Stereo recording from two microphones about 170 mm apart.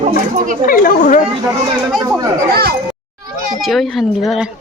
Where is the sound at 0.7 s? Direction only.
50° left (ahead or behind).